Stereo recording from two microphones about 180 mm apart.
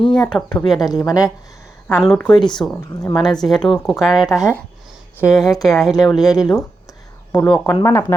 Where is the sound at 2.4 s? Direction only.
25° left (ahead or behind).